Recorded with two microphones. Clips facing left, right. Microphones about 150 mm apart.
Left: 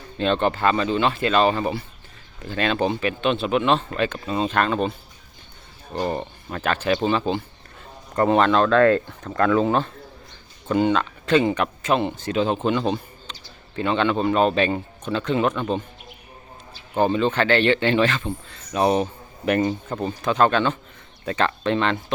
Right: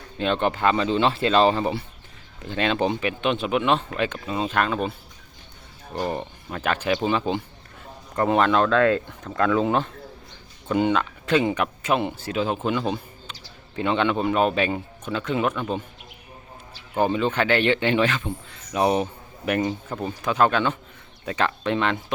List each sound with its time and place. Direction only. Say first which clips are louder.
0.2 s a man's voice: left 2 dB; 15° right (ahead or behind)
6.1 s a man's voice: left 2 dB; 10° right (ahead or behind)
17.0 s a man's voice: left 2 dB; 10° right (ahead or behind)